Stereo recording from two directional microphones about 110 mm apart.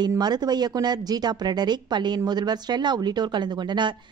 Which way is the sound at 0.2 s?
40° right (ahead or behind).